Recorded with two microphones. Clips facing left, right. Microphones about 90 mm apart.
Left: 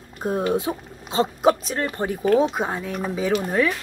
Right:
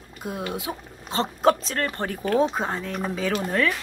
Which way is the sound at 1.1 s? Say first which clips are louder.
Left 2 dB; 15° left (ahead or behind).